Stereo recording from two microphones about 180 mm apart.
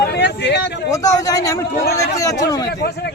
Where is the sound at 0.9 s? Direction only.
20° left (ahead or behind).